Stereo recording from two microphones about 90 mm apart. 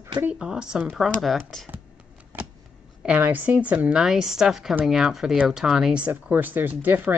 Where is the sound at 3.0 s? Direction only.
20° right (ahead or behind).